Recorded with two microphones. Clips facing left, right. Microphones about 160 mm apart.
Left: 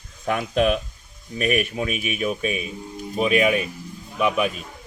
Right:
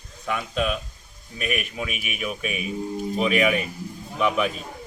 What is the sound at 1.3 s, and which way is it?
Speech, 40° left (ahead or behind).